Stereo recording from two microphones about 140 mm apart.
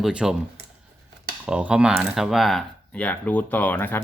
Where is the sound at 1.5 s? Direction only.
5° right (ahead or behind); by 4.0 s 15° left (ahead or behind).